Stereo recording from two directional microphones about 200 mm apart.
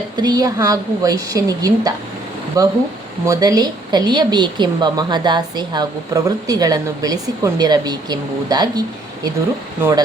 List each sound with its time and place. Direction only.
0.2 s a woman's voice: 20° right (ahead or behind)